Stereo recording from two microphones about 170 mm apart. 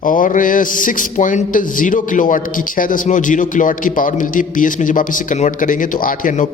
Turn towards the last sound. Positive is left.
turn(degrees=50)  # may be behind; listen again after turning